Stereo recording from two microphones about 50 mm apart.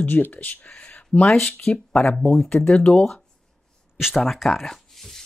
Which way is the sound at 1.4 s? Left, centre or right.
Left.